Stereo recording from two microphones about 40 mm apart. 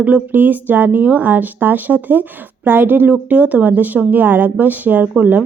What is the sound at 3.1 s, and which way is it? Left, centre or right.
A woman's voice, right.